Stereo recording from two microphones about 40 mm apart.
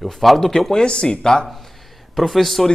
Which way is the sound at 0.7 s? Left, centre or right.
Left.